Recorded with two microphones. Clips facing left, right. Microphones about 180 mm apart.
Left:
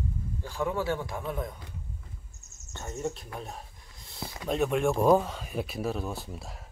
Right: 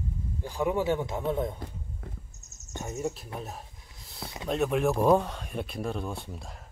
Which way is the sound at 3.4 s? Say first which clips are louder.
Right 1 dB; centre (ahead or behind).